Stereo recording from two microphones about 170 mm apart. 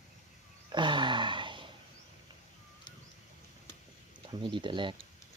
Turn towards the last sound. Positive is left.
turn(degrees=-30)  # may be behind; listen again after turning